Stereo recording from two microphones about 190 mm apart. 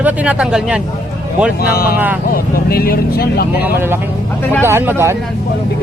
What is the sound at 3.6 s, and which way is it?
Speech, 10° right (ahead or behind).